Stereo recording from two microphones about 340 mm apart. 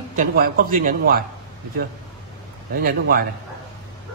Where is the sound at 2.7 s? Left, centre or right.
Right.